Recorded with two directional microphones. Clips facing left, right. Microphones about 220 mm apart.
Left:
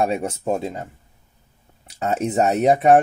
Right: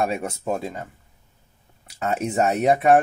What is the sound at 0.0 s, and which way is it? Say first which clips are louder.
Speech: left 3 dB; 30° left (ahead or behind).